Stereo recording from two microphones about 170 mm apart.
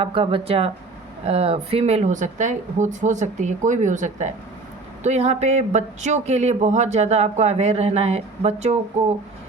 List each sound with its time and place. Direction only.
0.0 s speech: 35° right (ahead or behind)